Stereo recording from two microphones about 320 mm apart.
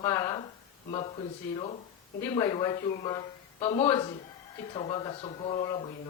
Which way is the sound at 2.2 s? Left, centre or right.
Centre.